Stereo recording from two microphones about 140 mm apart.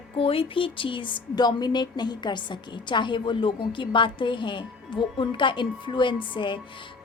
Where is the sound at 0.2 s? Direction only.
40° left (ahead or behind).